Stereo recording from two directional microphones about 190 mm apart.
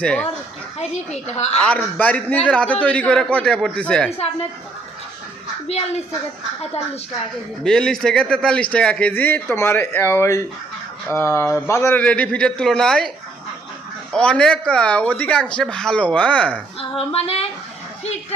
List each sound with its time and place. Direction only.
0.0 s speech: 5° left (ahead or behind)
0.7 s a woman's voice: 35° left (ahead or behind)
1.6 s a man's voice: 5° left (ahead or behind)
5.7 s a woman's voice: 35° left (ahead or behind)
7.6 s a man's voice: 5° left (ahead or behind)
14.1 s speech: 5° left (ahead or behind)
16.9 s a woman's voice: 30° left (ahead or behind)